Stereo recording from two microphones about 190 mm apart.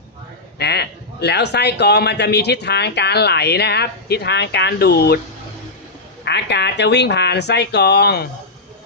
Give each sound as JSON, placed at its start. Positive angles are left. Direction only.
{"t": 0.6, "sound": "a man's voice", "side_deg": 60}
{"t": 6.2, "sound": "a man's voice", "side_deg": 60}